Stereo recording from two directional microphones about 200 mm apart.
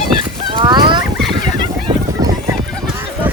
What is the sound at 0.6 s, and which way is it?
Fowl, 20° right (ahead or behind).